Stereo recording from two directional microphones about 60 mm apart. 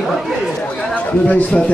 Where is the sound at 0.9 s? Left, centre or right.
Left.